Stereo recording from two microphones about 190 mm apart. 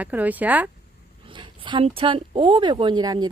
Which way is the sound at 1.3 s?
25° right (ahead or behind).